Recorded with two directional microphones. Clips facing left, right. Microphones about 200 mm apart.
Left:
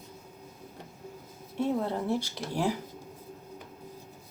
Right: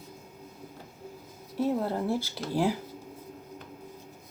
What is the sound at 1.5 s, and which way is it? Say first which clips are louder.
Speech: right 1 dB; 5° right (ahead or behind).